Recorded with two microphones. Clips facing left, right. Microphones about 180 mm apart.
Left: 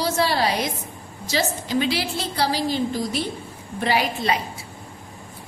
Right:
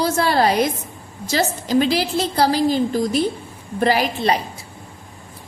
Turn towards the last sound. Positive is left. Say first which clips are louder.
# right 3 dB
turn(degrees=-40)  # may be behind; listen again after turning